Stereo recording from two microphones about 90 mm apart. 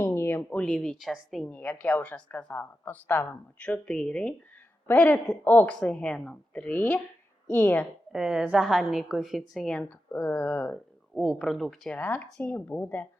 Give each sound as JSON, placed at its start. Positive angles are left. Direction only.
{"t": 0.0, "sound": "a sound", "side_deg": 25}
{"t": 0.6, "sound": "a woman's voice", "side_deg": 5}
{"t": 1.5, "sound": "a woman's voice", "side_deg": 15}
{"t": 4.9, "sound": "a woman's voice", "side_deg": 20}
{"t": 8.1, "sound": "a woman's voice", "side_deg": -5}
{"t": 10.1, "sound": "speech", "side_deg": 20}
{"t": 11.1, "sound": "a woman's voice", "side_deg": 0}
{"t": 11.9, "sound": "speech", "side_deg": 20}